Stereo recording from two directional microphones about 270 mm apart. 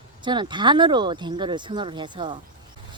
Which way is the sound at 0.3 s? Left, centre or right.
Centre.